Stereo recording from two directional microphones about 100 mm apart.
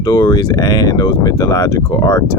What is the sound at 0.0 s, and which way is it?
Speech, 40° left (ahead or behind).